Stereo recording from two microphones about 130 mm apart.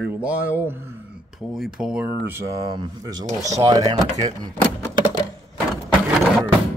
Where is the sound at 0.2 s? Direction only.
10° right (ahead or behind).